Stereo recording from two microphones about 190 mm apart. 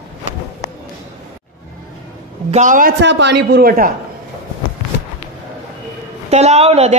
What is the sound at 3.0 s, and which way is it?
Speech, 65° right (ahead or behind).